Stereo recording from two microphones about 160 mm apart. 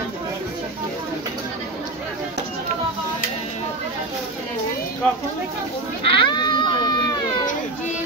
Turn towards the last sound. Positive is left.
turn(degrees=25)  # may be behind; listen again after turning